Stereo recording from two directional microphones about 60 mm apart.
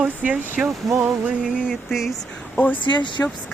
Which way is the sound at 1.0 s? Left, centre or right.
Centre.